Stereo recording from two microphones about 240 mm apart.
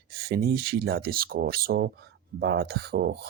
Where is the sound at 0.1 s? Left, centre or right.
Right.